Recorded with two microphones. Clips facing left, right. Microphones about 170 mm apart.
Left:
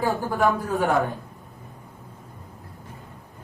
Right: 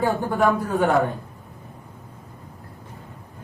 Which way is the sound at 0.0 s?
Centre (ahead or behind).